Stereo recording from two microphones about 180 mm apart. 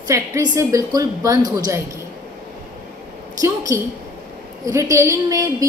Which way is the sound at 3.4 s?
15° right (ahead or behind).